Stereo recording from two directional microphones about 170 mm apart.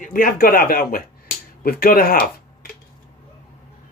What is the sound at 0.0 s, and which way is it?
Speech, 55° left (ahead or behind).